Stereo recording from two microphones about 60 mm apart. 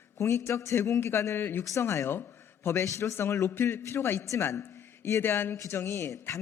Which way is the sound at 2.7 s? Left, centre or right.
Left.